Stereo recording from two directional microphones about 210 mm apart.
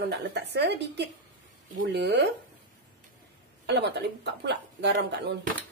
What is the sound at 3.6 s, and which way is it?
Speech, 50° right (ahead or behind).